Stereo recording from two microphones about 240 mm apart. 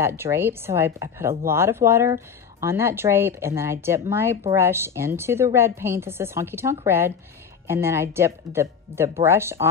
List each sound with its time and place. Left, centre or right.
0.0 s speech: centre